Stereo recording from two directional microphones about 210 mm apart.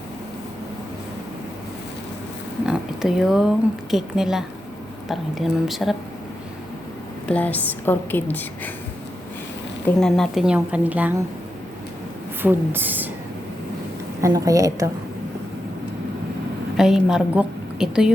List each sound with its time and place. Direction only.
2.6 s speech: 5° right (ahead or behind)
7.3 s a woman's voice: 5° left (ahead or behind)
10.0 s speech: centre (ahead or behind)
12.4 s a woman's voice: 10° right (ahead or behind)
14.2 s a woman's voice: 15° right (ahead or behind)
16.7 s a woman's voice: centre (ahead or behind)